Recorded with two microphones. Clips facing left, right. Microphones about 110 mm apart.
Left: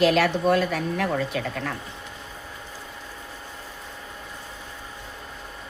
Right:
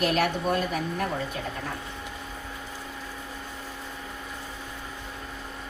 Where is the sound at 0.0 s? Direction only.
90° left.